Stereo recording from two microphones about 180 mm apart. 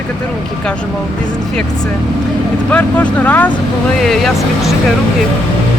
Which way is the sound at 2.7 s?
5° left (ahead or behind).